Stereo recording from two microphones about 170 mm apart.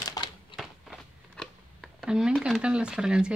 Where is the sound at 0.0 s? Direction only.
25° left (ahead or behind).